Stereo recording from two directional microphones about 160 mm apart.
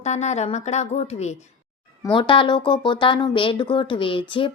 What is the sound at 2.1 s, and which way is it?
Speech, 30° left (ahead or behind).